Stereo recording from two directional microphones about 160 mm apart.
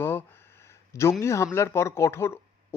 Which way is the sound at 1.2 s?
20° left (ahead or behind).